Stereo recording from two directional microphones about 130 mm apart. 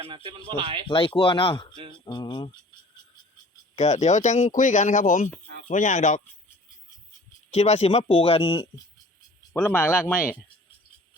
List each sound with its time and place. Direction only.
0.0 s speech: 40° right (ahead or behind)
0.9 s speech: 40° left (ahead or behind)
3.8 s speech: 60° left (ahead or behind); by 5.3 s 80° left
5.7 s speech: 65° left (ahead or behind)
7.5 s speech: 60° left (ahead or behind); by 8.6 s 40° left (ahead or behind)
9.5 s speech: 15° left (ahead or behind)